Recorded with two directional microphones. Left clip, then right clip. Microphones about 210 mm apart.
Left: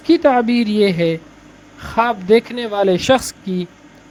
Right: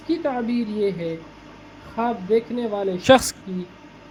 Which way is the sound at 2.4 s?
90° left.